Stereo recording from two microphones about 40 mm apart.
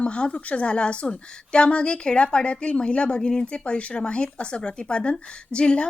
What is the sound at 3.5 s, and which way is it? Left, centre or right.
Speech, left.